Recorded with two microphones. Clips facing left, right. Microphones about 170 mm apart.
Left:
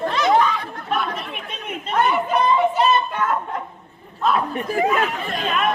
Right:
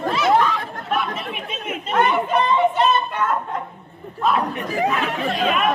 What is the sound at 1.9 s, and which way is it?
A man's voice, centre (ahead or behind).